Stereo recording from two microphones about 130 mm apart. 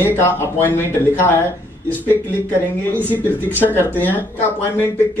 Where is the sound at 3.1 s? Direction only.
15° left (ahead or behind).